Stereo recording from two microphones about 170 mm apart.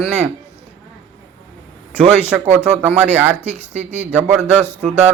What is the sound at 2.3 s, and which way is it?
A man's voice, 5° right (ahead or behind).